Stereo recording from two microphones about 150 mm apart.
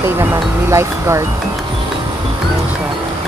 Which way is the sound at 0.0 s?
15° right (ahead or behind).